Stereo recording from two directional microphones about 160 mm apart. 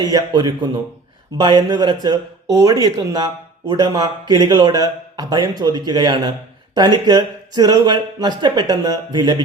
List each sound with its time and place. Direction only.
0.0 s a man's voice: 25° right (ahead or behind)